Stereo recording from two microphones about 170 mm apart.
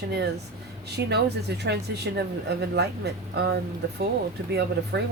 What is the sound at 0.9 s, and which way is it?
Speech, 70° right (ahead or behind).